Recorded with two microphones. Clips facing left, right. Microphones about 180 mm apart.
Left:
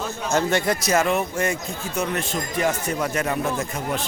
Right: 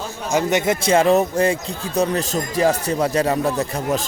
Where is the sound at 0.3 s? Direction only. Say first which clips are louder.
Right 3 dB; 15° right (ahead or behind).